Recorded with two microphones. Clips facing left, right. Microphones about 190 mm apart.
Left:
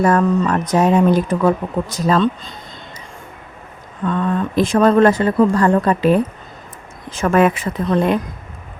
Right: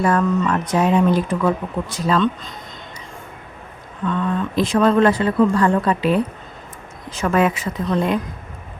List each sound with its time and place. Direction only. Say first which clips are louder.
0.0 s speech: left 3 dB; 40° left (ahead or behind)
4.0 s speech: left 2 dB; 45° left (ahead or behind)